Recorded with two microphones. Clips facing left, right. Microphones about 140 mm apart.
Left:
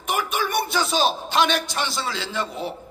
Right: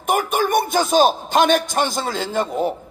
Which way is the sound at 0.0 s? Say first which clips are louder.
Right 6 dB; 50° right (ahead or behind).